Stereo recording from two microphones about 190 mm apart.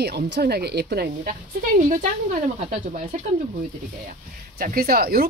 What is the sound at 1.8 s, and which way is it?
Speech, 40° right (ahead or behind).